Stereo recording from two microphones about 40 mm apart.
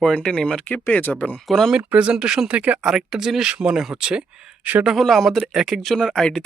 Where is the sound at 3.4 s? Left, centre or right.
Right.